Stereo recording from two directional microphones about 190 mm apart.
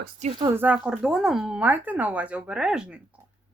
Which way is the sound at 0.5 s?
10° right (ahead or behind).